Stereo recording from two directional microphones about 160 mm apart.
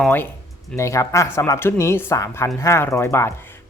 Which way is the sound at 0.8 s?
20° left (ahead or behind).